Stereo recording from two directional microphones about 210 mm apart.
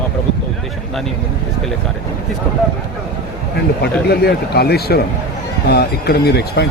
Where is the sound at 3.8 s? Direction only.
50° left (ahead or behind).